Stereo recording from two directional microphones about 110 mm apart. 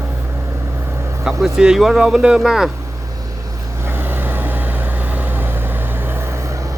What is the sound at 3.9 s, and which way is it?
Vehicle, 20° right (ahead or behind).